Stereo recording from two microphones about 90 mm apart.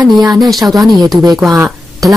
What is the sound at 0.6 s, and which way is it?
Speech, 50° right (ahead or behind).